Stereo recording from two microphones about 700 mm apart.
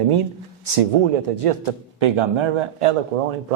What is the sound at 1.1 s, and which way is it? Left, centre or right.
Speech, right.